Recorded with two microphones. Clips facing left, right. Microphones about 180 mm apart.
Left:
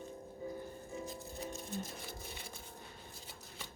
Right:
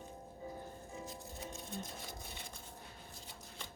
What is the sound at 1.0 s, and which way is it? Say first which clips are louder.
Music: left 3 dB; centre (ahead or behind).